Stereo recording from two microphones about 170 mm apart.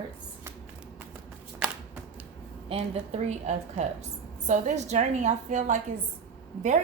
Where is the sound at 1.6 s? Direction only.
5° right (ahead or behind).